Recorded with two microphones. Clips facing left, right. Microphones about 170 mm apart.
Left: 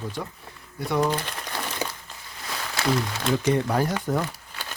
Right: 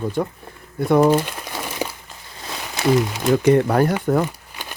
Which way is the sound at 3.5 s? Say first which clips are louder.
Right 7 dB; 60° right (ahead or behind).